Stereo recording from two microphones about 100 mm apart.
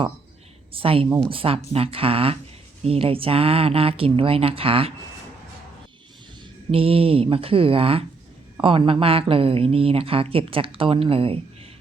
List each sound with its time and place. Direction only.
0.7 s speech: 65° right (ahead or behind)
6.7 s speech: 70° right (ahead or behind)